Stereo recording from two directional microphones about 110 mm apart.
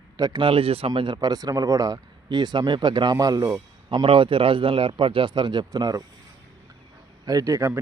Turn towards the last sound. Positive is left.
turn(degrees=-25)  # may be behind; listen again after turning